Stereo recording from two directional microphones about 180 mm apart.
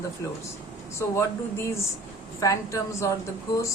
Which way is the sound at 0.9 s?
15° left (ahead or behind).